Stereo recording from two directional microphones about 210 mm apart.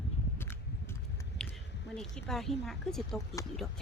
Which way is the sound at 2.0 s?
Centre (ahead or behind).